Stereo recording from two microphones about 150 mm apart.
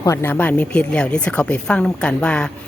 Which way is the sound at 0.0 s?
20° left (ahead or behind).